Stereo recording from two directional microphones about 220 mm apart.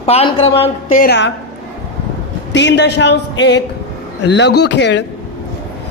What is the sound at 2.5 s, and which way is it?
A woman's voice, 50° left (ahead or behind).